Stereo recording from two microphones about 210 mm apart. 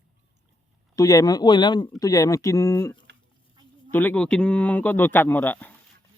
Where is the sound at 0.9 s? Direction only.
15° left (ahead or behind).